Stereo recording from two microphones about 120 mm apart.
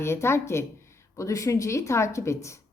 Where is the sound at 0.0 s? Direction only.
20° left (ahead or behind).